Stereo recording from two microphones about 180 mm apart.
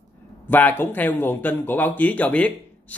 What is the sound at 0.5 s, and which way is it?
Speech, 10° left (ahead or behind).